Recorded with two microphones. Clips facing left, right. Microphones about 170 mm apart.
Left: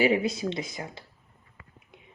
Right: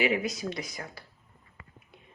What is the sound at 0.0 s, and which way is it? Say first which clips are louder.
Speech: left 4 dB; 30° left (ahead or behind).